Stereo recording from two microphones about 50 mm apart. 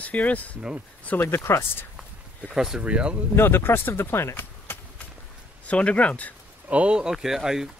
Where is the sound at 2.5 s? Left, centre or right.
Centre.